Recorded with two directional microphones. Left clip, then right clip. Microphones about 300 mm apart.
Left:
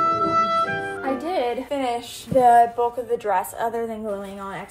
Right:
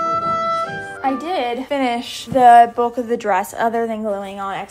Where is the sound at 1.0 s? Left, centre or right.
Centre.